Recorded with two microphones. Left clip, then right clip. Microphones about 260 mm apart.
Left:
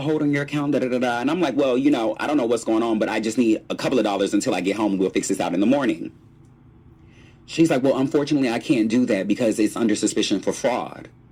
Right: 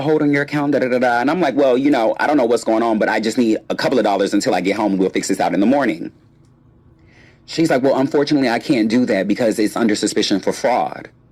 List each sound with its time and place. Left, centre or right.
0.0 s a man's voice: right
7.4 s a man's voice: right